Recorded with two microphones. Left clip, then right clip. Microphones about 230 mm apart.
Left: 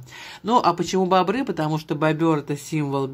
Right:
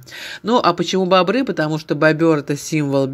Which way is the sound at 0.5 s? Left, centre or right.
Centre.